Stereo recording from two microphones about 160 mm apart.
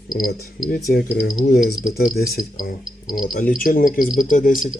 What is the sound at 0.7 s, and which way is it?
Speech, 85° left.